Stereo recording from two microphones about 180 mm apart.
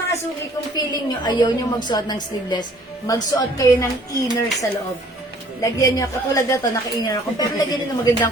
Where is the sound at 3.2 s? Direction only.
20° left (ahead or behind).